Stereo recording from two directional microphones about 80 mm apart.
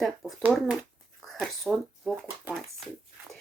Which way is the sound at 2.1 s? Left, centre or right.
Centre.